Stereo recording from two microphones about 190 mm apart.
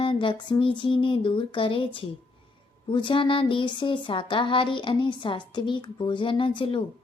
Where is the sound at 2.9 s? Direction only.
25° left (ahead or behind).